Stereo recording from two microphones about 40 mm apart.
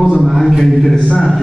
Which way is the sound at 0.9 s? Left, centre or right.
Left.